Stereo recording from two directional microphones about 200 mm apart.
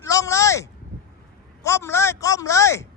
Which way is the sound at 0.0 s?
15° left (ahead or behind).